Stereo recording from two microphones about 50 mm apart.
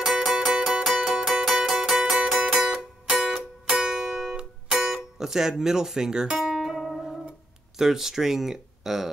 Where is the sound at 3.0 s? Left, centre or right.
Centre.